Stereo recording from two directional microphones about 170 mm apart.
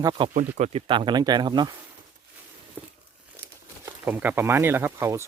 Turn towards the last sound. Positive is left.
turn(degrees=-15)  # may be behind; listen again after turning